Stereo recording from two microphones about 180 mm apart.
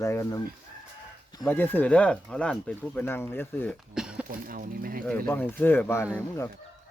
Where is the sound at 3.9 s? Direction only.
5° right (ahead or behind).